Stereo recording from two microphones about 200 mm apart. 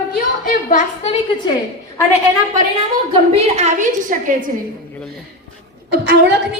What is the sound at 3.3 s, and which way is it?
A woman's voice, 30° right (ahead or behind).